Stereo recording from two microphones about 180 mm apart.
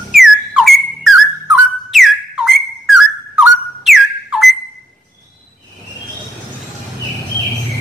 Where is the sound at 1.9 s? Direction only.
Centre (ahead or behind).